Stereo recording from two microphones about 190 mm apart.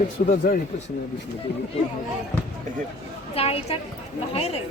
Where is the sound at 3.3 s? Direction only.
30° left (ahead or behind).